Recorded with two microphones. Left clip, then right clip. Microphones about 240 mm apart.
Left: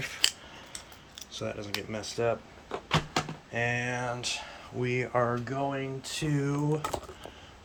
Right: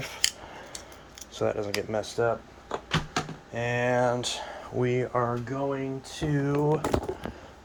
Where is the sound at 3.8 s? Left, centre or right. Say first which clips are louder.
Right 8 dB; right.